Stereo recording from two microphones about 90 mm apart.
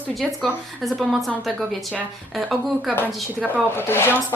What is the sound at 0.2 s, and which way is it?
A woman's voice, centre (ahead or behind).